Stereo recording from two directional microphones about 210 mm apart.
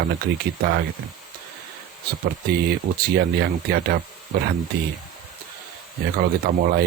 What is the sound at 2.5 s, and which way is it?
Speech, 50° right (ahead or behind).